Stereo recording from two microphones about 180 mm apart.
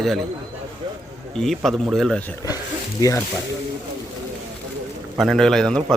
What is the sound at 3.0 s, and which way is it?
Speech, 15° left (ahead or behind).